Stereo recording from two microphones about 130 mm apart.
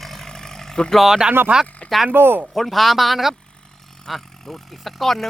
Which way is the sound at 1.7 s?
10° left (ahead or behind).